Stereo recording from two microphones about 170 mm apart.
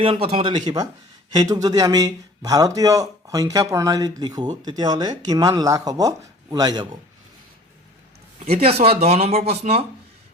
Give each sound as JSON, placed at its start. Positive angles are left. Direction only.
{"t": 0.0, "sound": "a man's voice", "side_deg": -35}
{"t": 8.4, "sound": "speech", "side_deg": -35}